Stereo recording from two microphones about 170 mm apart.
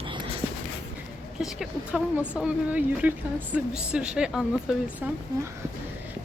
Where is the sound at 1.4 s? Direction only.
5° right (ahead or behind).